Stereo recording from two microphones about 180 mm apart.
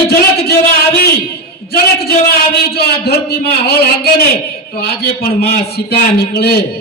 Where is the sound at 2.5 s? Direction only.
60° left (ahead or behind).